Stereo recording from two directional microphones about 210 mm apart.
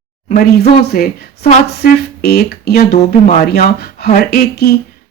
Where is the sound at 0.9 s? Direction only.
45° left (ahead or behind).